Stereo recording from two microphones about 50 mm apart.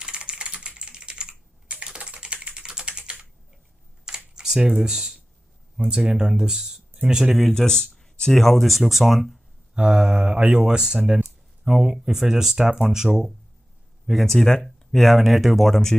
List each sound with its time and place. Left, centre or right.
0.0 s typing: centre
4.4 s speech: centre
7.3 s speech: centre
9.8 s speech: centre
14.2 s speech: centre